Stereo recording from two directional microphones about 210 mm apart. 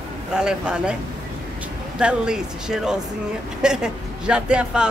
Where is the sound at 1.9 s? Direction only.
5° right (ahead or behind).